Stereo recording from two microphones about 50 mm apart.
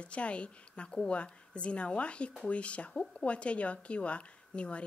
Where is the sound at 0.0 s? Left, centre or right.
Left.